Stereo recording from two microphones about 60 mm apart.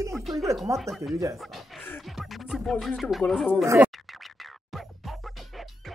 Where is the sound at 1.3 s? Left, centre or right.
Centre.